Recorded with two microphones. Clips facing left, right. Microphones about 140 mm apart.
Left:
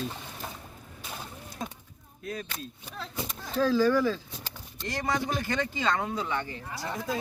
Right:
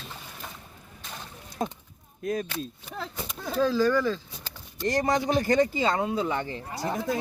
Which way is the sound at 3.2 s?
Centre (ahead or behind).